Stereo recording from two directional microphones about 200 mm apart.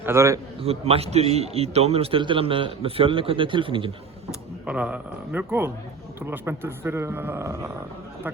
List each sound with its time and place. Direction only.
0.0 s speech: 15° right (ahead or behind)
0.6 s a man's voice: 30° right (ahead or behind)
4.6 s speech: 5° right (ahead or behind)